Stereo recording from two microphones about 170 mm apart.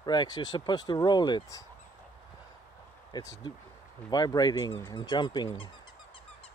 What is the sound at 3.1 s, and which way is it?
Speech, 20° left (ahead or behind).